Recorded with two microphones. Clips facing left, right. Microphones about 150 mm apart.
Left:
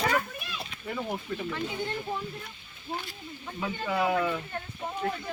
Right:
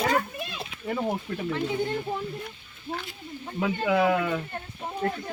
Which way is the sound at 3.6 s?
90° right.